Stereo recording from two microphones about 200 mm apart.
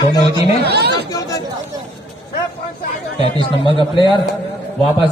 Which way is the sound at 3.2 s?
25° left (ahead or behind).